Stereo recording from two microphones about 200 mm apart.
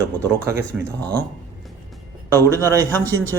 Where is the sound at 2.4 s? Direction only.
10° left (ahead or behind).